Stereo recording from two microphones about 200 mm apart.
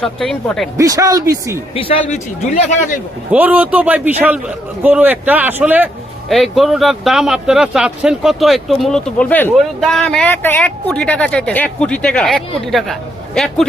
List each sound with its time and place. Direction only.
0.0 s a man's voice: 5° left (ahead or behind)
0.8 s speech: 15° right (ahead or behind)
1.7 s a man's voice: 30° left (ahead or behind)
3.3 s a man's voice: 10° right (ahead or behind)